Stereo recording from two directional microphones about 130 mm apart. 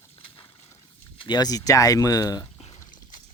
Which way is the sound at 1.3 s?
30° left (ahead or behind).